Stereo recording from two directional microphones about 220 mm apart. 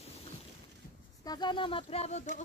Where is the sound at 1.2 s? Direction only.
20° left (ahead or behind).